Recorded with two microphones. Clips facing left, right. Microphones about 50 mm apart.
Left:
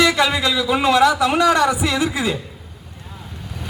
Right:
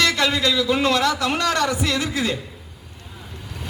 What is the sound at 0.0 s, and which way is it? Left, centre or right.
A man's voice, centre.